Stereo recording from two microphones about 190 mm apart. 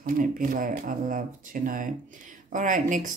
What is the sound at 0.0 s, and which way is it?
Speech, 45° right (ahead or behind).